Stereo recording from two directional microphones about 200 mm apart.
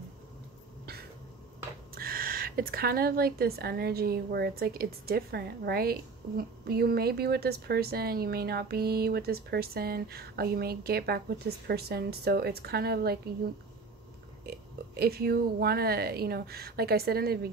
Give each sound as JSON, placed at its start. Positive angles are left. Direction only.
{"t": 2.0, "sound": "a woman's voice", "side_deg": -45}
{"t": 14.4, "sound": "a woman's voice", "side_deg": -50}